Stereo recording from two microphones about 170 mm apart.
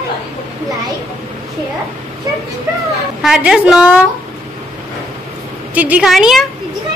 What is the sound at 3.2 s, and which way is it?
Speech, 5° right (ahead or behind).